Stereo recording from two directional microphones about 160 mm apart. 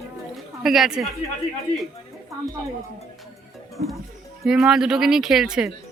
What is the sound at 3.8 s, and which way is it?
Speech, 90° right.